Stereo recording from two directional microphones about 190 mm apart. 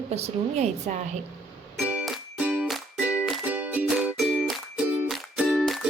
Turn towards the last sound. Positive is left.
turn(degrees=0)  # may be behind; listen again after turning